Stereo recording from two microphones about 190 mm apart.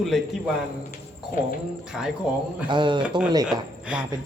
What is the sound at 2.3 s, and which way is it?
Speech, 5° right (ahead or behind).